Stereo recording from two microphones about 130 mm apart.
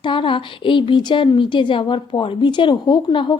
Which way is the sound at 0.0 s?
40° left (ahead or behind).